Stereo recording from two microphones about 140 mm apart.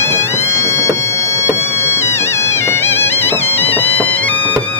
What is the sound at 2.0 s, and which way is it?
Music, 20° left (ahead or behind).